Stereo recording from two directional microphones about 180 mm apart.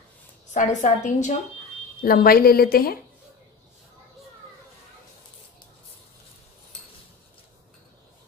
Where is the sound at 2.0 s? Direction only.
55° left (ahead or behind).